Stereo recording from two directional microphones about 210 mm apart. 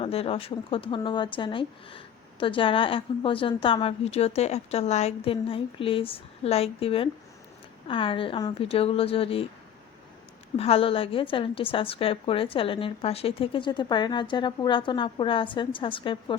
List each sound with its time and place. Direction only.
0.0 s speech: 30° left (ahead or behind)
10.6 s speech: 25° left (ahead or behind)